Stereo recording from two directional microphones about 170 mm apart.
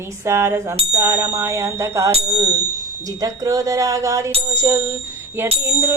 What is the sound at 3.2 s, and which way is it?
Music, 20° right (ahead or behind).